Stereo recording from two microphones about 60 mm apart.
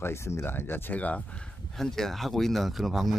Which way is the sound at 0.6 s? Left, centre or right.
Left.